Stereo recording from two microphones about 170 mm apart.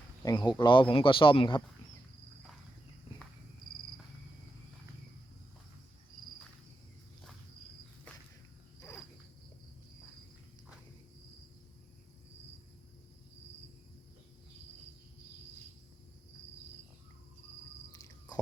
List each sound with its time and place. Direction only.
0.2 s speech: 25° left (ahead or behind)